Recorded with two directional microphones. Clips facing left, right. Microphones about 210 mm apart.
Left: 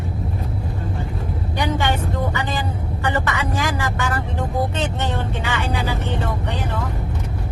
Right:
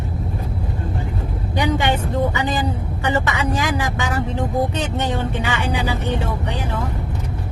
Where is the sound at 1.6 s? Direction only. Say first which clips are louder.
Right 3 dB; 15° right (ahead or behind).